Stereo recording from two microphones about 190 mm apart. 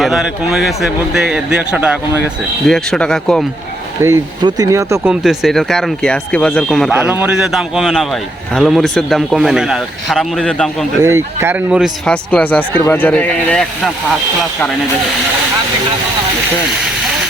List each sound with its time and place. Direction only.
0.0 s speech: centre (ahead or behind)
4.0 s speech: 20° right (ahead or behind)
5.0 s speech: centre (ahead or behind)
11.0 s speech: 15° right (ahead or behind); by 13.9 s 5° left (ahead or behind)